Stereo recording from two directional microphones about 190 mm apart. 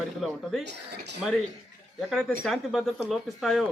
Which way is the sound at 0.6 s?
65° right (ahead or behind).